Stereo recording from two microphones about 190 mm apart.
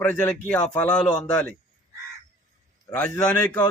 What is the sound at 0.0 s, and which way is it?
A man's voice, 5° left (ahead or behind).